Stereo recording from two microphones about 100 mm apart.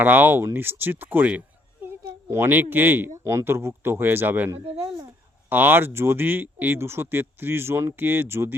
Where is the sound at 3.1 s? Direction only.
30° right (ahead or behind).